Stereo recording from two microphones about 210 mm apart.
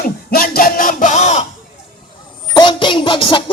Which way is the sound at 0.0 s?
45° left (ahead or behind).